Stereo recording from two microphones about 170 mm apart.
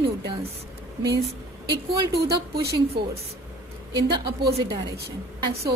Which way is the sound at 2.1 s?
70° right (ahead or behind).